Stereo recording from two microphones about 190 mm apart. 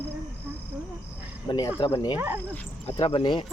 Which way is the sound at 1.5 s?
20° left (ahead or behind).